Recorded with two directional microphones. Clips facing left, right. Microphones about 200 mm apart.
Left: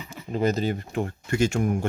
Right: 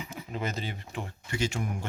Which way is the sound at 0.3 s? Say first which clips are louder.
Left 12 dB; 40° left (ahead or behind).